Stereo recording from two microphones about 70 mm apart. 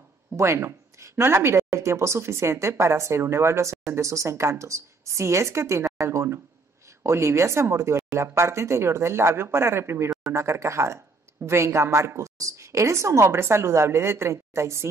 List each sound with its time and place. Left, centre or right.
0.4 s a woman's voice: right